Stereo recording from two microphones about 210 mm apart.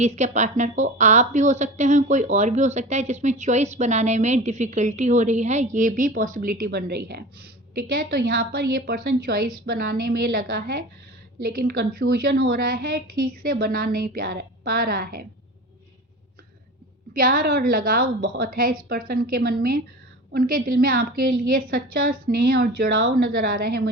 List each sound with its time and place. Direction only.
0.0 s a woman's voice: 35° right (ahead or behind)
17.2 s a woman's voice: 40° right (ahead or behind)